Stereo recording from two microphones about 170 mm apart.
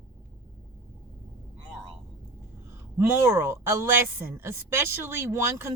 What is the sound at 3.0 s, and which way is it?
A woman's voice, 15° right (ahead or behind).